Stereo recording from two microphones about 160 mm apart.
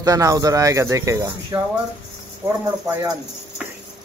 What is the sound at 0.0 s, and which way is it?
Speech, 20° right (ahead or behind).